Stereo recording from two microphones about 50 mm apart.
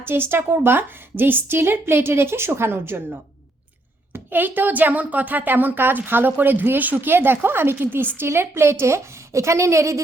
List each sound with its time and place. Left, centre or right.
0.0 s a woman's voice: right
8.3 s a woman's voice: right